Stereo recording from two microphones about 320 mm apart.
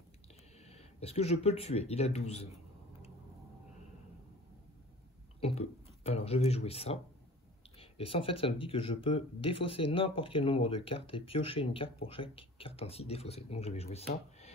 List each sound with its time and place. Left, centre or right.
0.7 s speech: centre
5.4 s a sound: centre
6.0 s speech: centre